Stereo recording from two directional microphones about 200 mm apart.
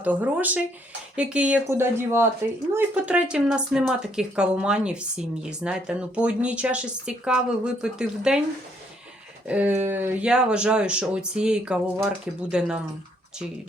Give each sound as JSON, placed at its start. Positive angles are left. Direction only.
{"t": 0.0, "sound": "speech", "side_deg": -10}
{"t": 9.5, "sound": "speech", "side_deg": -10}